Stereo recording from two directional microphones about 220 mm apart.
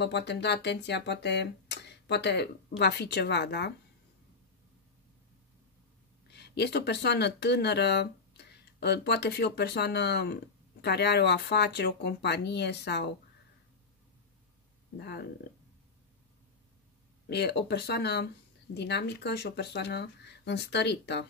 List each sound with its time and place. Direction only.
0.0 s speech: 50° left (ahead or behind)
6.3 s speech: 50° left (ahead or behind)
15.0 s speech: 50° left (ahead or behind)
17.3 s speech: 50° left (ahead or behind)